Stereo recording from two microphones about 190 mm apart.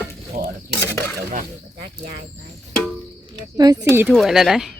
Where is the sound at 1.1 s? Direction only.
45° right (ahead or behind).